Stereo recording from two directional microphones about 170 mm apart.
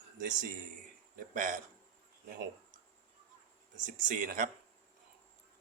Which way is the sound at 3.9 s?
50° right (ahead or behind).